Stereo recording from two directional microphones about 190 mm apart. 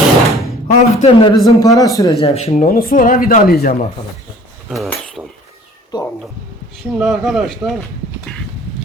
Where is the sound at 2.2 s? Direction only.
35° left (ahead or behind).